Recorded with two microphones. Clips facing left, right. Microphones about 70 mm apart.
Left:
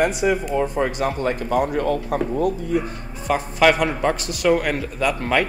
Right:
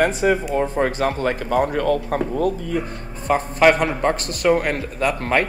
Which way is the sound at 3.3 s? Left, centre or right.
Right.